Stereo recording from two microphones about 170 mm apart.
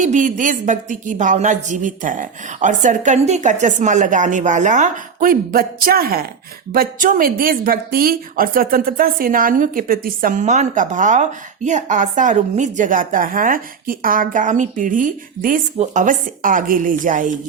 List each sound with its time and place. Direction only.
0.0 s a woman's voice: 50° right (ahead or behind)